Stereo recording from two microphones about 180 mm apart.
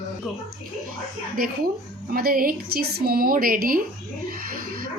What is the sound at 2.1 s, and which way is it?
A woman's voice, 55° right (ahead or behind).